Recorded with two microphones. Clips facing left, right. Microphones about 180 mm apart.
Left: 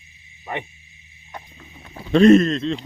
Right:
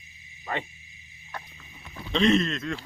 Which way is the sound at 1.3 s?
20° left (ahead or behind).